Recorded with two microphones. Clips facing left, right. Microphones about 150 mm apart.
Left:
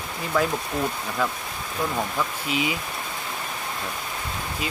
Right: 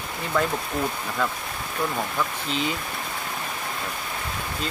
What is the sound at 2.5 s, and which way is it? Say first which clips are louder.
Speech: left 2 dB; 10° left (ahead or behind).